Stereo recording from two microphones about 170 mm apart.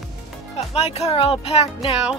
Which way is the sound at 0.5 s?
35° left (ahead or behind).